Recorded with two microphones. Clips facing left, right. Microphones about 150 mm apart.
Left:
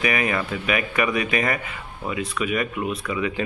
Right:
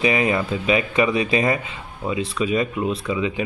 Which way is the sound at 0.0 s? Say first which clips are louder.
Right 4 dB; 25° right (ahead or behind).